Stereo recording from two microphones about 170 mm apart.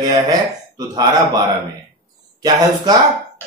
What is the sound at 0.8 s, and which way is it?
Speech, 25° right (ahead or behind).